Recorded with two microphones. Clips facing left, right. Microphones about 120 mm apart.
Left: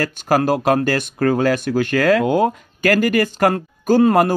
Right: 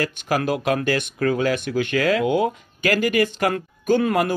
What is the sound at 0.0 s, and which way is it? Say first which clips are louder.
Speech: left 5 dB; 40° left (ahead or behind).